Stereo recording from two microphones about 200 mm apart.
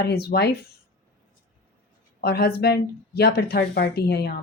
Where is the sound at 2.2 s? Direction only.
55° left (ahead or behind).